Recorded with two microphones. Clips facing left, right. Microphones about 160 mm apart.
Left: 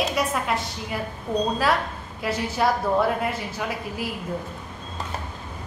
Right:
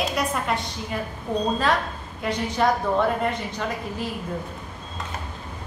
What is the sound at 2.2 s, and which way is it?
A woman's voice, 5° left (ahead or behind).